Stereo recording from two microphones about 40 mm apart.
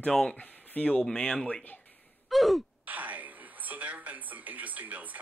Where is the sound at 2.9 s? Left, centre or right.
Right.